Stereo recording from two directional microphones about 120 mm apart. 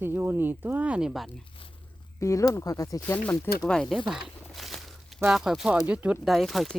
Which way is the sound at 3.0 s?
10° left (ahead or behind).